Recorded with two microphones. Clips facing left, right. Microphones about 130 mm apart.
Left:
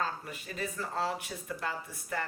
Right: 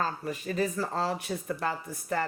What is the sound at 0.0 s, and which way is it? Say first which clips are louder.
Speech: right 5 dB; 40° right (ahead or behind).